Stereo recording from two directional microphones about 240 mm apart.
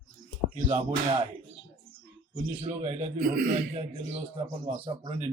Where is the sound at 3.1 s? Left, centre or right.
Right.